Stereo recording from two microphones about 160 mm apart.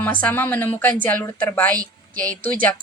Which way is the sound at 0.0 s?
10° left (ahead or behind).